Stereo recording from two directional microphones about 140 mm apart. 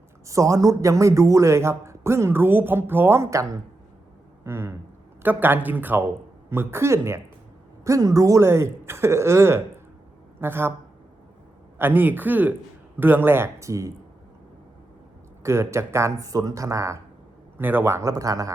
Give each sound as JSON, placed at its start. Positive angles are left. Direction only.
{"t": 0.3, "sound": "a man's voice", "side_deg": -25}
{"t": 11.8, "sound": "speech", "side_deg": -15}
{"t": 15.4, "sound": "a man's voice", "side_deg": -20}